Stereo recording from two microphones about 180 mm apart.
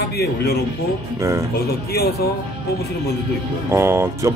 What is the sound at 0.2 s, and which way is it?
Speech, 60° left (ahead or behind).